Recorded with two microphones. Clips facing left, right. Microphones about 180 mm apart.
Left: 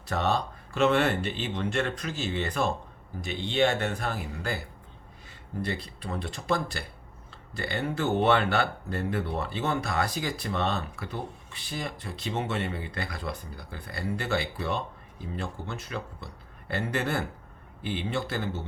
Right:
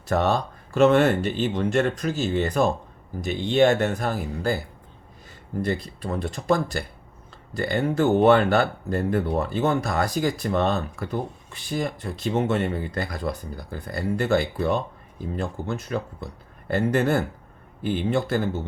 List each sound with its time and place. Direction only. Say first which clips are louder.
0.1 s speech: right 5 dB; 45° right (ahead or behind)
5.6 s speech: right 7 dB; 45° right (ahead or behind)